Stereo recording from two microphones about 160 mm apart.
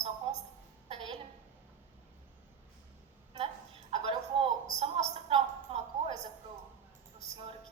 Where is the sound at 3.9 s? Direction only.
35° right (ahead or behind).